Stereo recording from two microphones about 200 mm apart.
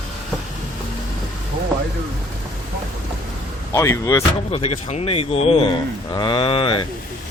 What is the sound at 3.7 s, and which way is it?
Speech, 15° left (ahead or behind).